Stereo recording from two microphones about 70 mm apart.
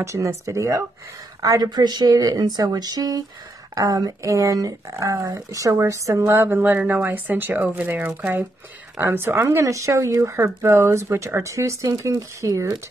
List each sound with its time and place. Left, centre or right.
0.0 s speech: right
1.4 s speech: right
2.1 s speech: right
6.3 s speech: right
8.9 s speech: right